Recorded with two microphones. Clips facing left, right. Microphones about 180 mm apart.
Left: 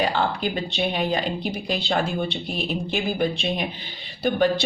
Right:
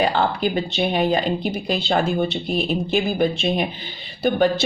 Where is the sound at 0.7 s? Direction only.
50° right (ahead or behind).